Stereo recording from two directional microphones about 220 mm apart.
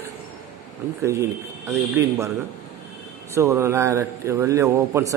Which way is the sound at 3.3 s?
15° right (ahead or behind).